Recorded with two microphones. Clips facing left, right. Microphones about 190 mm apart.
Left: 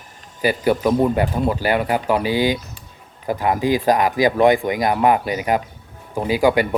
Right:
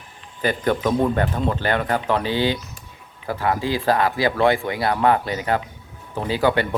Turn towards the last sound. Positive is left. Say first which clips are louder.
# left 3 dB
turn(degrees=10)  # may be behind; listen again after turning